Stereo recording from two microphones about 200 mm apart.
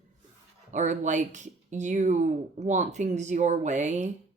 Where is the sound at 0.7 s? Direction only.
40° right (ahead or behind).